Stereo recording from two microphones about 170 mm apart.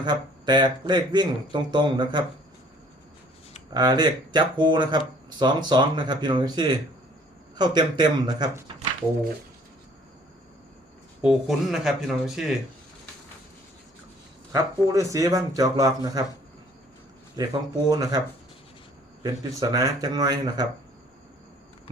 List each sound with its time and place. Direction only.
0.0 s speech: 25° right (ahead or behind)
3.8 s speech: 25° right (ahead or behind)
11.2 s speech: centre (ahead or behind)
14.5 s speech: 20° right (ahead or behind)
17.4 s speech: 25° right (ahead or behind)
19.2 s speech: 20° right (ahead or behind)